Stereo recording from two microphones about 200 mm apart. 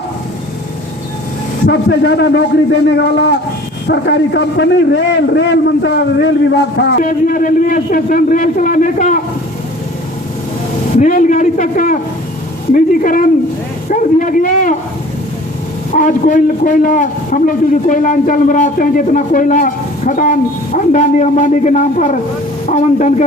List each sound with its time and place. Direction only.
1.6 s a man's voice: 55° left (ahead or behind); by 9.2 s 40° left (ahead or behind)
11.0 s a man's voice: 40° left (ahead or behind)
16.0 s a man's voice: 40° left (ahead or behind)